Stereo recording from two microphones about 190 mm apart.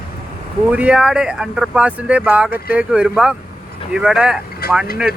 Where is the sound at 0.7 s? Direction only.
5° right (ahead or behind).